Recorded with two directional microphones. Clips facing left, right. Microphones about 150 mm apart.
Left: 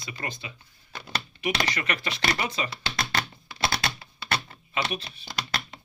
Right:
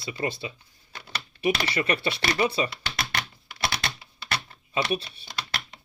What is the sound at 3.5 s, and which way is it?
Typing, 25° left (ahead or behind).